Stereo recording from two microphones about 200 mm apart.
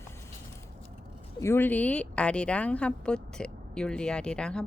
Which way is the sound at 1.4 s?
10° left (ahead or behind).